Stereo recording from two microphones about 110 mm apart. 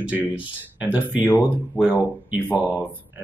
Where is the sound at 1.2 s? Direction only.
15° left (ahead or behind).